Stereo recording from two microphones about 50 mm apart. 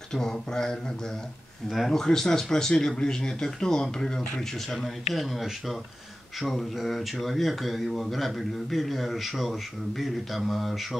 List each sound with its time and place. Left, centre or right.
0.1 s speech: centre
1.7 s speech: centre
2.0 s speech: centre